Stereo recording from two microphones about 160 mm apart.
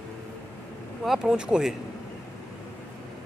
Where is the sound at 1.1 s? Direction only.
5° right (ahead or behind).